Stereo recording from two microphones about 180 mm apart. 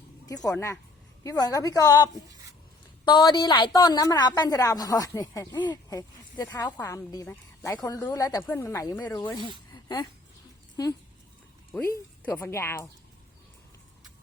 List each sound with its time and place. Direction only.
0.4 s a woman's voice: 15° left (ahead or behind)
9.7 s a sound: 25° left (ahead or behind)
11.7 s a woman's voice: 10° left (ahead or behind)